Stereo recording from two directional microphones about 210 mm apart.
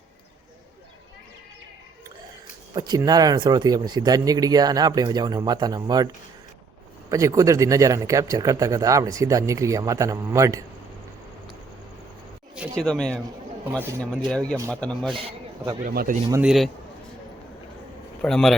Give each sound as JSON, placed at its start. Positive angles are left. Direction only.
{"t": 2.7, "sound": "speech", "side_deg": -20}
{"t": 7.1, "sound": "speech", "side_deg": -15}
{"t": 12.5, "sound": "speech", "side_deg": 5}
{"t": 14.3, "sound": "speech", "side_deg": 5}
{"t": 15.1, "sound": "a man's voice", "side_deg": -25}
{"t": 15.9, "sound": "speech", "side_deg": -45}
{"t": 16.3, "sound": "speech", "side_deg": -5}
{"t": 18.2, "sound": "speech", "side_deg": 5}